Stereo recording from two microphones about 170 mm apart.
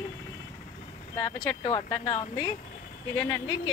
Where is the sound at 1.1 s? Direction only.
15° left (ahead or behind).